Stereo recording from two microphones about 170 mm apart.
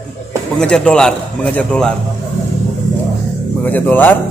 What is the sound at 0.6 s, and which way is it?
A man's voice, 5° left (ahead or behind).